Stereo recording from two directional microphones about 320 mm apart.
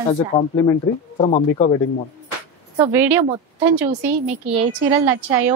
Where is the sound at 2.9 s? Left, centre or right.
Centre.